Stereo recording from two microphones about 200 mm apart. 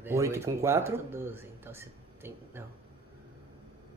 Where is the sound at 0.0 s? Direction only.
15° right (ahead or behind).